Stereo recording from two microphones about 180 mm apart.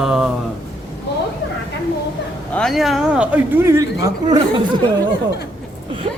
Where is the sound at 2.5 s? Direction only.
Centre (ahead or behind); by 4.4 s 20° right (ahead or behind).